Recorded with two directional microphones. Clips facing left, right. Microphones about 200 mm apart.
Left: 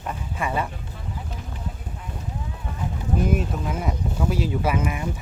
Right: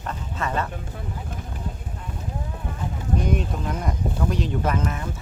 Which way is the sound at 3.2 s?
5° left (ahead or behind).